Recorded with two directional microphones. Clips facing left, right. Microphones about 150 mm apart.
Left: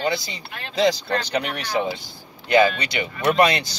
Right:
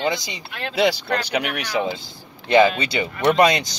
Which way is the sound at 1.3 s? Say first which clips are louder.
Right 1 dB; 10° right (ahead or behind).